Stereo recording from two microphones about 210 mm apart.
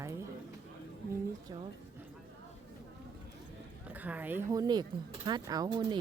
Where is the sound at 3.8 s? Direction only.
5° right (ahead or behind).